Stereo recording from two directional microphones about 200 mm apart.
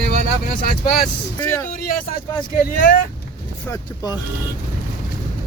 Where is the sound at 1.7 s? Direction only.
45° left (ahead or behind).